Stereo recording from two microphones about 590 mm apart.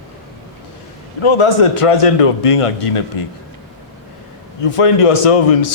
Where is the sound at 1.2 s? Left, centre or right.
Left.